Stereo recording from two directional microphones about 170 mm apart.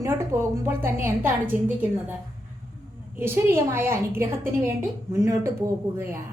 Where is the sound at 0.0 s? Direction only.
15° right (ahead or behind).